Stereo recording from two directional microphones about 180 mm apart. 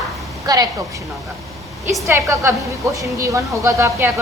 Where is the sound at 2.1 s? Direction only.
15° right (ahead or behind).